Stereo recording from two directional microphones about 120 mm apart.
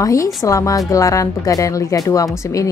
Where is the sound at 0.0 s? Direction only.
25° left (ahead or behind).